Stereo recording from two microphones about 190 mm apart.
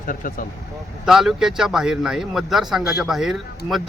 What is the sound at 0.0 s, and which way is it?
Speech, 45° left (ahead or behind).